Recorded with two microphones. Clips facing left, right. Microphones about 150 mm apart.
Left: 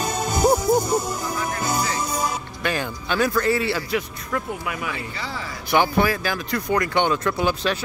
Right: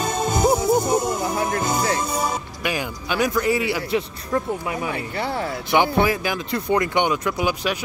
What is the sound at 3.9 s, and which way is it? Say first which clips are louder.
Speech: right 3 dB; 30° right (ahead or behind).